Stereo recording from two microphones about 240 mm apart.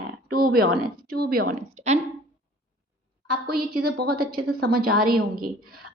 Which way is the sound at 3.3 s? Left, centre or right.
Right.